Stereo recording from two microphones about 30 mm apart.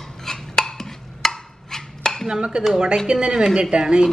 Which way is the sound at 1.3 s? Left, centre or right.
Centre.